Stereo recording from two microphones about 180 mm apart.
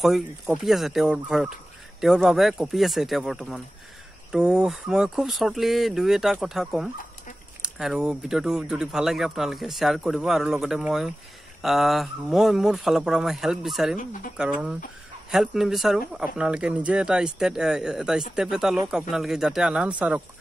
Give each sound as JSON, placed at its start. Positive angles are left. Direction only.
{"t": 0.0, "sound": "speech", "side_deg": 0}
{"t": 13.9, "sound": "speech", "side_deg": 50}
{"t": 14.3, "sound": "speech", "side_deg": -5}